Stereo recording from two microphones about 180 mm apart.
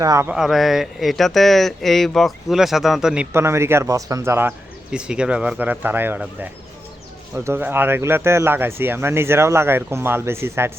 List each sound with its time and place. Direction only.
0.0 s speech: 20° right (ahead or behind)
0.3 s speech: 5° right (ahead or behind)
3.3 s speech: 15° right (ahead or behind)